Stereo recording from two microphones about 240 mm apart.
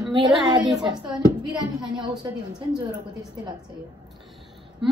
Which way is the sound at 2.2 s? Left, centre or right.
Centre.